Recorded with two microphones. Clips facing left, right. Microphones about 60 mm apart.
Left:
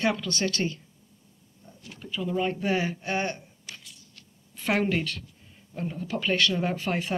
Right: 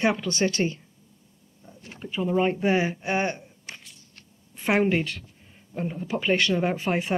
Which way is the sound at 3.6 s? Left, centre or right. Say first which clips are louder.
Right 2 dB; right.